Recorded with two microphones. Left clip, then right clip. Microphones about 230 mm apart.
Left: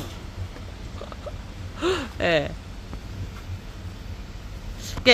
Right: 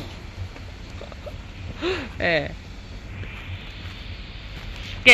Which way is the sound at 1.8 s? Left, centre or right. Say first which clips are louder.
Left 1 dB; centre.